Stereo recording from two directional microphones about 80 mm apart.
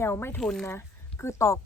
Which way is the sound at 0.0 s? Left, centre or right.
Left.